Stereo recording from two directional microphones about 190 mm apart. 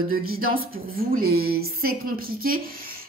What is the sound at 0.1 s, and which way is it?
A woman's voice, 50° right (ahead or behind).